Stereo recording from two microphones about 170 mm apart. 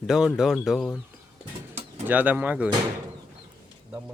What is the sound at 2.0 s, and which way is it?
Speech, 10° right (ahead or behind).